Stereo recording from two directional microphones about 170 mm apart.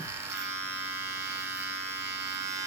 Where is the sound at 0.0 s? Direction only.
15° right (ahead or behind).